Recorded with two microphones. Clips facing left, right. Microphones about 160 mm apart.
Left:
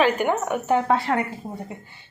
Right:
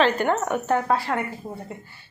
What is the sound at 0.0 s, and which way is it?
Speech, 10° left (ahead or behind).